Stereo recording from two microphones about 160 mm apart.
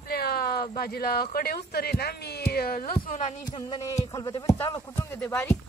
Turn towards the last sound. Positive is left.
turn(degrees=15)  # may be behind; listen again after turning